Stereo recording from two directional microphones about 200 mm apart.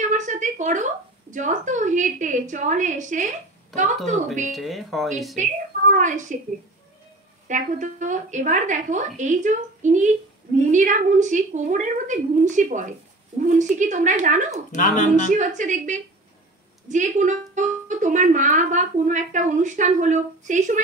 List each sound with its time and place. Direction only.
0.0 s a sound: 40° right (ahead or behind)
1.3 s speech: 40° right (ahead or behind)
4.5 s speech: centre (ahead or behind)
5.4 s speech: 40° right (ahead or behind)
7.4 s speech: 40° right (ahead or behind)